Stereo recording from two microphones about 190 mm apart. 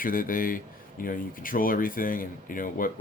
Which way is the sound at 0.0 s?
50° left (ahead or behind).